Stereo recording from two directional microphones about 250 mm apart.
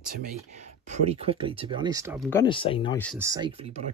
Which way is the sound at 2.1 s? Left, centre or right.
Centre.